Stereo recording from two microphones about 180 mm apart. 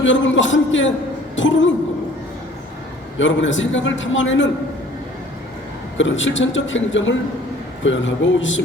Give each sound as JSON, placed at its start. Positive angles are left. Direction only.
{"t": 0.0, "sound": "a man's voice", "side_deg": 90}
{"t": 3.2, "sound": "a man's voice", "side_deg": 90}
{"t": 6.0, "sound": "a man's voice", "side_deg": 90}